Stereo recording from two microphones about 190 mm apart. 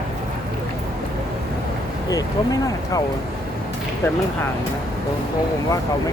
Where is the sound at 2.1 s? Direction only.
20° left (ahead or behind).